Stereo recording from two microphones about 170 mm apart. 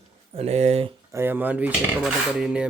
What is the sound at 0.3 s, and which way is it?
Speech, 40° right (ahead or behind).